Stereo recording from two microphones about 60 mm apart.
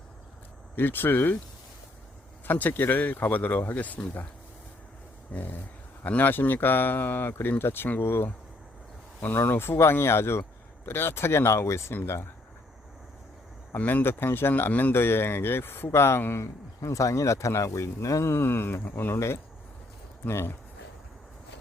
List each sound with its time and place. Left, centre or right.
0.8 s speech: left
2.5 s speech: left
5.3 s speech: left
13.7 s speech: left
14.7 s speech: left
14.9 s speech: left
18.3 s speech: left
20.2 s speech: left